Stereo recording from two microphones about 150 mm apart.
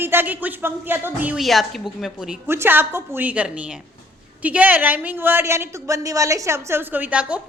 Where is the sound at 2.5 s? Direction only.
15° right (ahead or behind).